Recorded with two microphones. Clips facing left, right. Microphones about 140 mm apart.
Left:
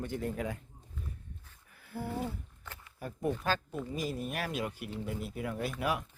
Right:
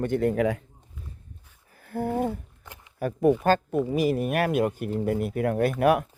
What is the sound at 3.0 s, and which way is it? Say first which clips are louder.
Speech: right 13 dB; 75° right (ahead or behind).